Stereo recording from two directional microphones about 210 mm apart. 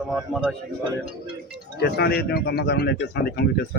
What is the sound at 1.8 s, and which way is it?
Speech, 50° left (ahead or behind).